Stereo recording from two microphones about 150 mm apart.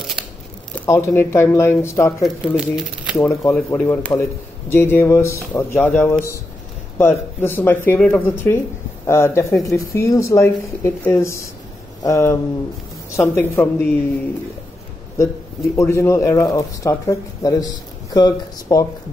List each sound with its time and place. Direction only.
0.8 s speech: 15° left (ahead or behind)
2.2 s speech: 5° right (ahead or behind)
3.2 s speech: 20° left (ahead or behind)
15.7 s speech: 15° left (ahead or behind)